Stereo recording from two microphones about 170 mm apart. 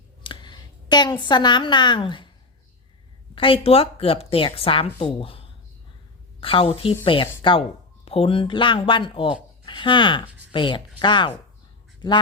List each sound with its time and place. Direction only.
0.2 s a woman's voice: 25° left (ahead or behind)
3.3 s a woman's voice: 30° left (ahead or behind)